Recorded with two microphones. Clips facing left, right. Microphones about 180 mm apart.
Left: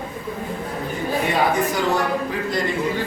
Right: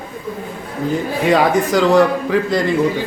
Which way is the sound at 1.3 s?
90° right.